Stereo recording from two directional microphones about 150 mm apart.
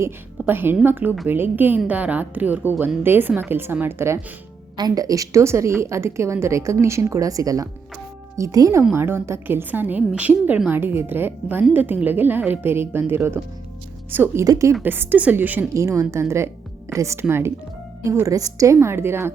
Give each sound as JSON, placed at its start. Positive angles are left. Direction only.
{"t": 0.0, "sound": "a woman's voice", "side_deg": -15}